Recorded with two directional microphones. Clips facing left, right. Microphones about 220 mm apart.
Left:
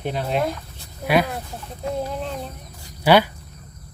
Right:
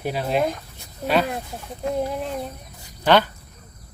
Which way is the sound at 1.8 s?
15° right (ahead or behind).